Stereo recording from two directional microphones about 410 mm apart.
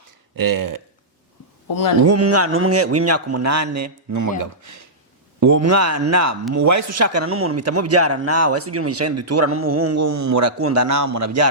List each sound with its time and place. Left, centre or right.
0.3 s speech: right
1.6 s speech: left
2.0 s speech: right